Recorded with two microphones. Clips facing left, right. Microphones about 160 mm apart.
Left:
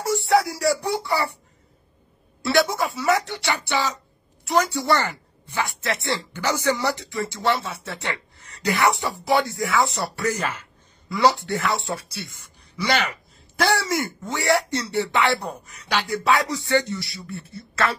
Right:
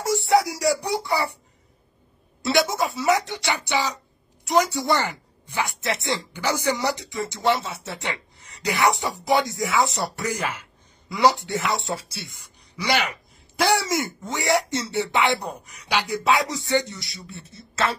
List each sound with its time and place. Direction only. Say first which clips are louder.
0.0 s speech: even; 20° right (ahead or behind)
2.4 s a woman's voice: left 1 dB; 20° right (ahead or behind)